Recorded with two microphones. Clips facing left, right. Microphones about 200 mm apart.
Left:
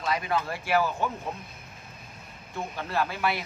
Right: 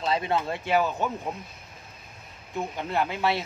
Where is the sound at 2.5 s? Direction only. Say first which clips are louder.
Right 2 dB; 20° right (ahead or behind).